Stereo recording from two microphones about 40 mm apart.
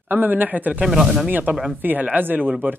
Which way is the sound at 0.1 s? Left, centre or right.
Right.